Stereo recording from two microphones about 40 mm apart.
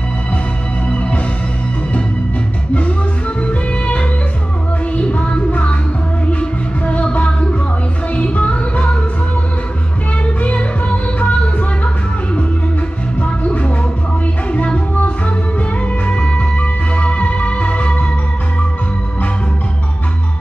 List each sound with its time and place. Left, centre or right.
0.9 s music: left
3.3 s music: left
10.2 s music: left
13.2 s music: left